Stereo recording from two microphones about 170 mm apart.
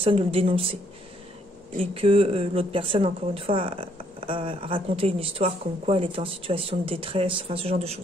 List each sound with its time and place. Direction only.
0.0 s speech: 30° right (ahead or behind)
2.0 s speech: 30° right (ahead or behind)